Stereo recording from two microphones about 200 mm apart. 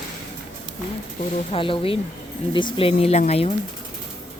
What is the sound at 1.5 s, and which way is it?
Speech, 25° left (ahead or behind).